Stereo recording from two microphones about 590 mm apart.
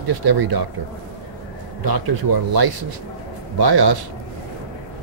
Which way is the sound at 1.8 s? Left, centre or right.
Right.